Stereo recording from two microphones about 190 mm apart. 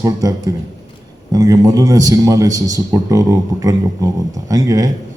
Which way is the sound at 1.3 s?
20° right (ahead or behind).